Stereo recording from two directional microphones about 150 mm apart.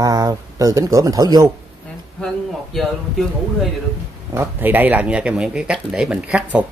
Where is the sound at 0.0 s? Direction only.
25° right (ahead or behind).